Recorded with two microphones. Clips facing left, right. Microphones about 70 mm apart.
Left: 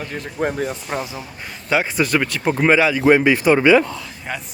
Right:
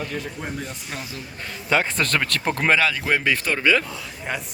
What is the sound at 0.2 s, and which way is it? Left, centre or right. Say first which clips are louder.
Speech: left 8 dB; left.